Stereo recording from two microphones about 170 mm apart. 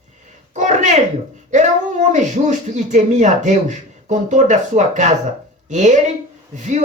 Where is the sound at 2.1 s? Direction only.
45° right (ahead or behind).